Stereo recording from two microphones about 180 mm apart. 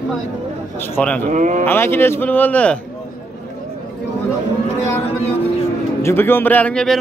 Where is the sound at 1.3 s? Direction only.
45° right (ahead or behind).